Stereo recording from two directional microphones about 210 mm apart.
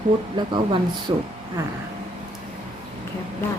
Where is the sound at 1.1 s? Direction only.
20° right (ahead or behind).